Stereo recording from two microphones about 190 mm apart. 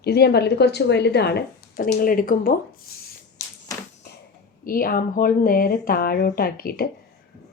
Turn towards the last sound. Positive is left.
turn(degrees=50)  # may be behind; listen again after turning